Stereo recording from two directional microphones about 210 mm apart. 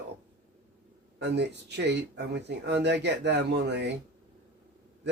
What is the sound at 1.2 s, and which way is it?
Speech, 55° right (ahead or behind).